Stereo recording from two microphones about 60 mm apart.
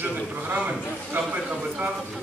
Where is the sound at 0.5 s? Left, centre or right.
Right.